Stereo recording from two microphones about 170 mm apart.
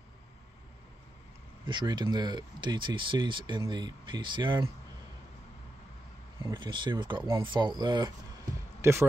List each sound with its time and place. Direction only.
1.7 s speech: 25° right (ahead or behind)
6.4 s speech: 25° right (ahead or behind)